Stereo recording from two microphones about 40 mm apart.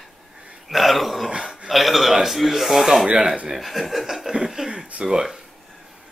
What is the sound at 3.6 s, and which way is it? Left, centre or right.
Speech, centre.